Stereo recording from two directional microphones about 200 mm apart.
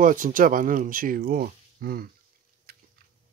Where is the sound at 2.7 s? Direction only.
50° right (ahead or behind).